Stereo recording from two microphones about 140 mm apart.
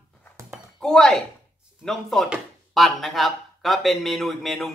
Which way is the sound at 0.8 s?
5° left (ahead or behind).